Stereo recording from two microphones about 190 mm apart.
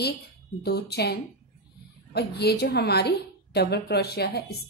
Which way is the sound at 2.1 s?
60° left (ahead or behind).